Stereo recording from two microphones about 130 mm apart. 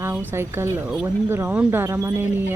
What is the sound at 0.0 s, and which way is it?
Speech, 15° right (ahead or behind).